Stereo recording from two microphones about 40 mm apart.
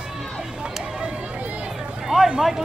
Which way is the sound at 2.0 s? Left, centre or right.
Centre.